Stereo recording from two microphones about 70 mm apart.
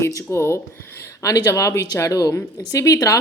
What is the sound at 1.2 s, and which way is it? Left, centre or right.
Speech, left.